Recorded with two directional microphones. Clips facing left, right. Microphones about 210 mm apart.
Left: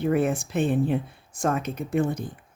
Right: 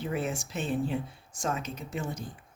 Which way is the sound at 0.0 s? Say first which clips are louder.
Left 9 dB; 55° left (ahead or behind).